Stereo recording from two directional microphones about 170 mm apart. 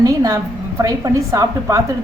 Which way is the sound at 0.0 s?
20° right (ahead or behind).